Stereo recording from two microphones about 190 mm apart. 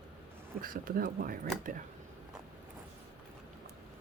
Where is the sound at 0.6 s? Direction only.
50° right (ahead or behind).